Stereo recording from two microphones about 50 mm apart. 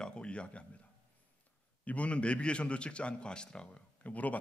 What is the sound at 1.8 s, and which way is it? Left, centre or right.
A man's voice, left.